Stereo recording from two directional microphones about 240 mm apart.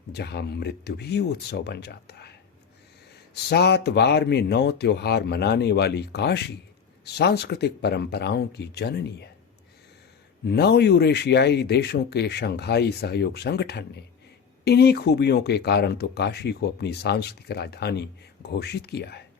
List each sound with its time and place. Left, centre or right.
0.1 s speech: left
3.5 s speech: left
10.4 s speech: left